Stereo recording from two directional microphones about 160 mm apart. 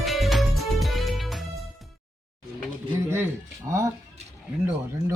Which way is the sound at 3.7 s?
20° right (ahead or behind).